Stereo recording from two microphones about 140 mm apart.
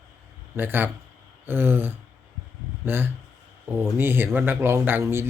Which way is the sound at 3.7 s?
15° right (ahead or behind).